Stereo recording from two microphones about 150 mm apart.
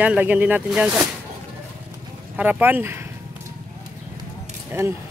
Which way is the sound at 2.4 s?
10° right (ahead or behind).